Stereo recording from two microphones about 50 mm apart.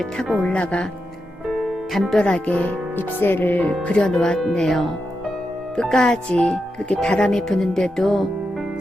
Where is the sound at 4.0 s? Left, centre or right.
Centre.